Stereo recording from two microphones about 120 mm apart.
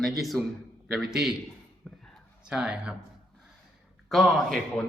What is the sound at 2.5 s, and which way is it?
Speech, 10° right (ahead or behind).